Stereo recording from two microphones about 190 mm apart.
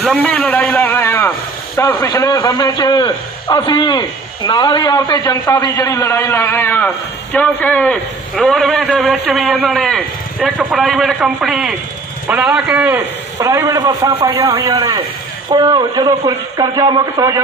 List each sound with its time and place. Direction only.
0.1 s a man's voice: 5° left (ahead or behind); by 17.4 s 15° right (ahead or behind)